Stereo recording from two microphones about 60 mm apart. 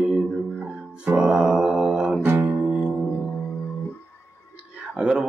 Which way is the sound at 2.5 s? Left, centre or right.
Centre.